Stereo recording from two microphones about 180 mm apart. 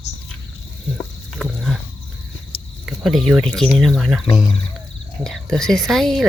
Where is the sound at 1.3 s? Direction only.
Centre (ahead or behind).